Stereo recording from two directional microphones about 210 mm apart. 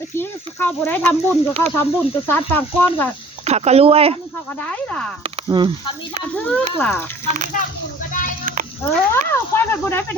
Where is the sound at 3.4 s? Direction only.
30° right (ahead or behind).